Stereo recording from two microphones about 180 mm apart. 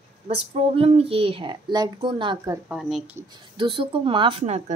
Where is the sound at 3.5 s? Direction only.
30° right (ahead or behind).